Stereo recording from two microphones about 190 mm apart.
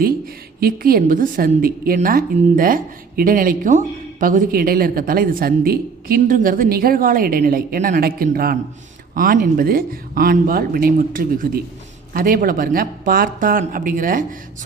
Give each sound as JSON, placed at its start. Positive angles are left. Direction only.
{"t": 0.6, "sound": "a woman's voice", "side_deg": -50}